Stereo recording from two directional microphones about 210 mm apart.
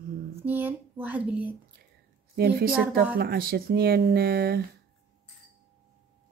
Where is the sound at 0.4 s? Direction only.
10° right (ahead or behind).